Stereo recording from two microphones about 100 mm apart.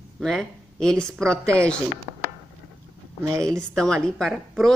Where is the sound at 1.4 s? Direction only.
30° right (ahead or behind).